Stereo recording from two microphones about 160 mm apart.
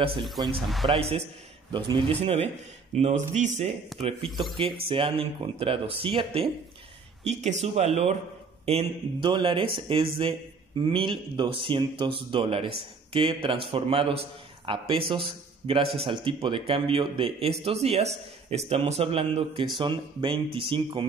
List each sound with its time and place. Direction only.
0.4 s speech: 25° right (ahead or behind); by 3.7 s 45° right (ahead or behind)
4.3 s speech: centre (ahead or behind)
4.8 s speech: 35° right (ahead or behind)